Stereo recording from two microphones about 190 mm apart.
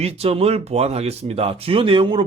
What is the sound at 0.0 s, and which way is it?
Speech, 30° right (ahead or behind).